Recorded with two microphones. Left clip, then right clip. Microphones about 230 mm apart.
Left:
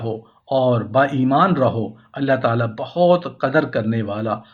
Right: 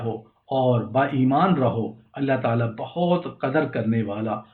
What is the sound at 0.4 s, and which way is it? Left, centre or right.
Speech, left.